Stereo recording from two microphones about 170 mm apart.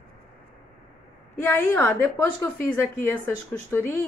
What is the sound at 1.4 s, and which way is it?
A woman's voice, 15° left (ahead or behind).